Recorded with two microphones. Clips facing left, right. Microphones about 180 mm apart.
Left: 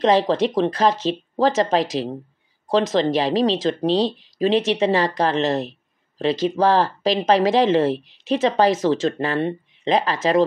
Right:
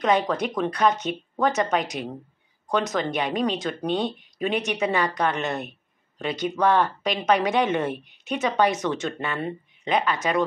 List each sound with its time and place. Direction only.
0.0 s speech: 30° left (ahead or behind)
3.8 s speech: 90° left
4.4 s speech: 30° left (ahead or behind)
7.9 s speech: 90° left
8.2 s speech: 30° left (ahead or behind)